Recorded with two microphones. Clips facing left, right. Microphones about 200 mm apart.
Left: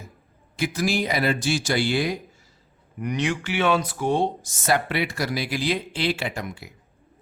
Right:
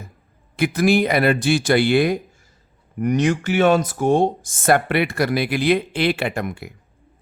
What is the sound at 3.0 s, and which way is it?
Speech, 45° right (ahead or behind).